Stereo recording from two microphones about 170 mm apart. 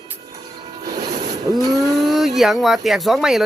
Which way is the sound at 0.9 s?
25° right (ahead or behind).